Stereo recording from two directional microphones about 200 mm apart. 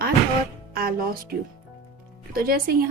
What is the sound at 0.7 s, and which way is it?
Music, 45° right (ahead or behind).